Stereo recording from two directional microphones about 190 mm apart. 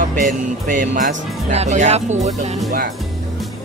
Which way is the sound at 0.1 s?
45° right (ahead or behind).